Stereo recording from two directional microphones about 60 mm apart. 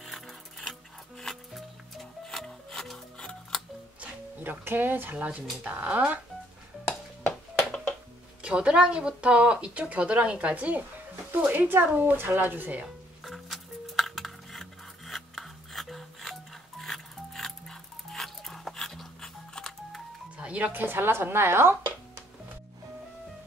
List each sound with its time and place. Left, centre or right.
0.0 s music: centre
4.4 s speech: right
5.1 s speech: right
8.4 s speech: centre
12.8 s music: centre
20.3 s speech: right